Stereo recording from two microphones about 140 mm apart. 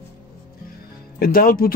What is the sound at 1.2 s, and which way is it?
Speech, 90° left.